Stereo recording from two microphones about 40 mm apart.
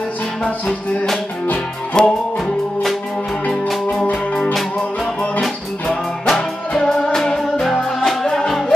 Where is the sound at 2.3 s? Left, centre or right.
Centre.